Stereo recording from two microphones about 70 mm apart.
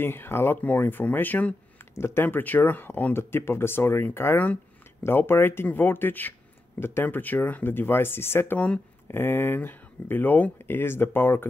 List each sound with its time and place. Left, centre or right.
0.0 s speech: left
2.0 s speech: left
2.2 s speech: left
8.5 s speech: centre
9.0 s speech: left